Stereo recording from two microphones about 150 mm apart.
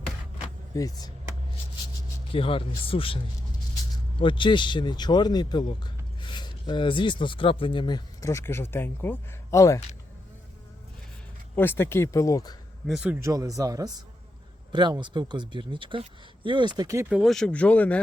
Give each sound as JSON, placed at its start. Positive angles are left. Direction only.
{"t": 0.7, "sound": "speech", "side_deg": 25}
{"t": 2.3, "sound": "speech", "side_deg": 35}
{"t": 4.2, "sound": "speech", "side_deg": 35}
{"t": 11.5, "sound": "speech", "side_deg": 15}
{"t": 12.9, "sound": "speech", "side_deg": -5}
{"t": 13.1, "sound": "speech", "side_deg": -20}
{"t": 17.1, "sound": "speech", "side_deg": 0}